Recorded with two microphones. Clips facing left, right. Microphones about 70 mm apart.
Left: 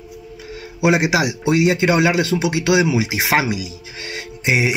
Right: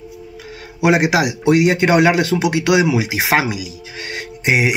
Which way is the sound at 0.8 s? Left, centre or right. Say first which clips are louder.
Right 2 dB; right.